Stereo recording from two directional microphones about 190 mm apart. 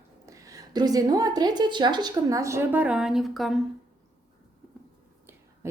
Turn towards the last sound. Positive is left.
turn(degrees=-15)  # may be behind; listen again after turning